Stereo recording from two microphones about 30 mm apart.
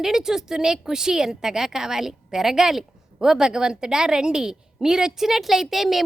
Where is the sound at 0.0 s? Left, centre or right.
Centre.